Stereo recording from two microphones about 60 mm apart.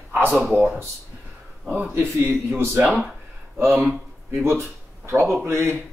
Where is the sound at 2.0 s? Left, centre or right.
Right.